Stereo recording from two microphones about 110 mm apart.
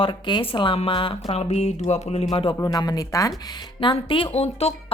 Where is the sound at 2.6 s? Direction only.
40° left (ahead or behind).